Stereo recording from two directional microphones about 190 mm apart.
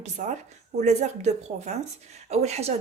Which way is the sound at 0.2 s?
40° right (ahead or behind).